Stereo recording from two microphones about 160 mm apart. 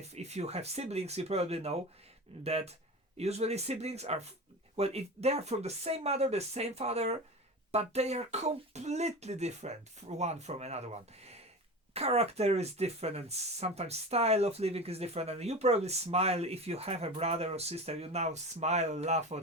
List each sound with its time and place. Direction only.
0.1 s speech: 45° right (ahead or behind)